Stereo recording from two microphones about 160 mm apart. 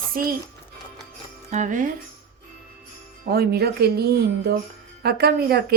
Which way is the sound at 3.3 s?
80° right.